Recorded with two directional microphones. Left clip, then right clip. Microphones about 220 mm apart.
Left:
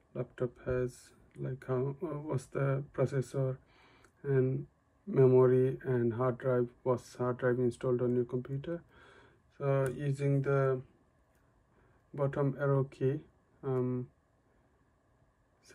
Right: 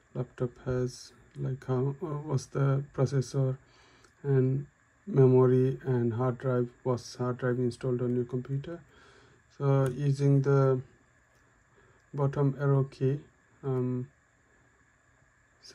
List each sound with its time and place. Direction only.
0.1 s speech: 10° right (ahead or behind)
9.6 s speech: 15° right (ahead or behind)
12.2 s speech: 5° right (ahead or behind)